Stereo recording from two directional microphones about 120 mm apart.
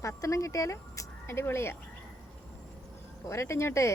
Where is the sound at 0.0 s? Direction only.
25° left (ahead or behind).